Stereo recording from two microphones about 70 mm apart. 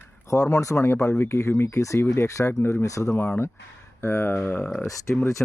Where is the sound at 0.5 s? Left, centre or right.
Left.